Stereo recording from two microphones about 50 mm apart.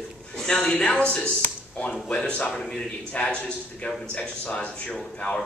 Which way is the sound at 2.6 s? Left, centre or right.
Centre.